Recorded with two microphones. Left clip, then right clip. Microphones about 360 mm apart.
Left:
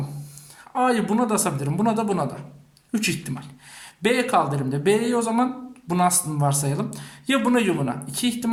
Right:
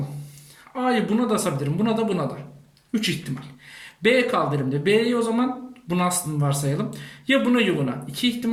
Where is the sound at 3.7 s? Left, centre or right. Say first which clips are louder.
Right 3 dB; centre.